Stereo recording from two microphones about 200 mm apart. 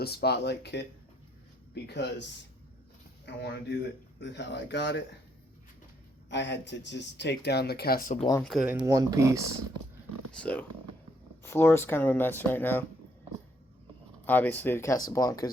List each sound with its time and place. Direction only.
0.0 s speech: 50° left (ahead or behind)
3.2 s speech: 60° left (ahead or behind)
6.3 s speech: 60° left (ahead or behind); by 8.2 s 45° left (ahead or behind)
8.4 s speech: centre (ahead or behind); by 9.6 s 15° right (ahead or behind)
10.3 s speech: 5° left (ahead or behind)
14.3 s speech: 10° left (ahead or behind)